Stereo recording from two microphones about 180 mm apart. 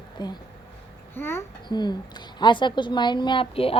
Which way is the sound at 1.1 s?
15° left (ahead or behind).